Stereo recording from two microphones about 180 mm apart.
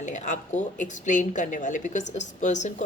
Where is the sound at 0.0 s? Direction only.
40° left (ahead or behind).